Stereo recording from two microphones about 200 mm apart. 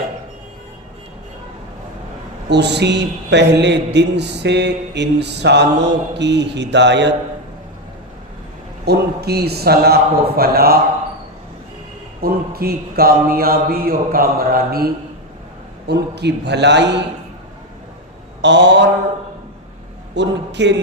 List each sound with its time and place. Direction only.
2.5 s a man's voice: 60° right (ahead or behind)
8.9 s a sound: 55° right (ahead or behind)
12.2 s a sound: 50° right (ahead or behind)
15.9 s a man's voice: 55° right (ahead or behind)
18.4 s a man's voice: 60° right (ahead or behind)
20.1 s a man's voice: 60° right (ahead or behind)